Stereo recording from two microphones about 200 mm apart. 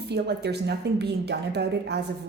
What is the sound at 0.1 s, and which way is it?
A woman's voice, 55° right (ahead or behind).